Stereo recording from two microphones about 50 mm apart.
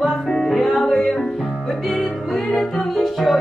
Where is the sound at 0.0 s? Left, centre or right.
Centre.